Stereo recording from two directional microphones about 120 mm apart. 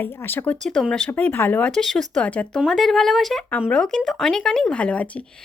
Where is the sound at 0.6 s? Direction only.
5° left (ahead or behind).